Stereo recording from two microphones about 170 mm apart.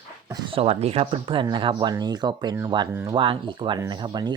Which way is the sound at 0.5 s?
35° right (ahead or behind).